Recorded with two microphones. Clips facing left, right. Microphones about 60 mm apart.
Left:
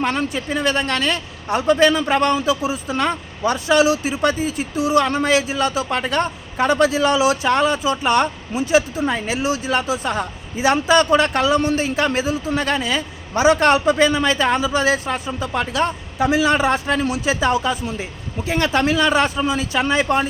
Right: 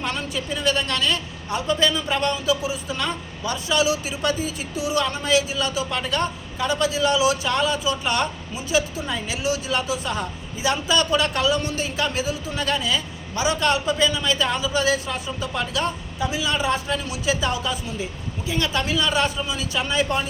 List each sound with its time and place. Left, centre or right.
0.0 s a man's voice: left
3.4 s speech: left
8.5 s speech: left
16.1 s speech: left